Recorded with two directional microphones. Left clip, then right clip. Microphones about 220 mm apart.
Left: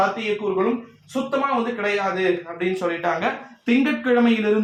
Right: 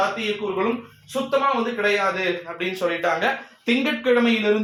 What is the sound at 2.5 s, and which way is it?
Speech, 35° right (ahead or behind).